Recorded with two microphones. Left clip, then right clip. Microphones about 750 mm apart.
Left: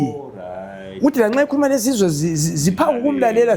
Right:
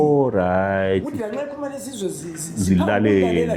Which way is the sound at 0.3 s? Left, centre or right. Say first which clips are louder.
Right 12 dB; right.